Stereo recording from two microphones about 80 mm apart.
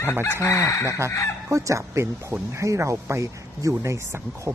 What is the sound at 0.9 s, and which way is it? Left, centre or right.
Speech, right.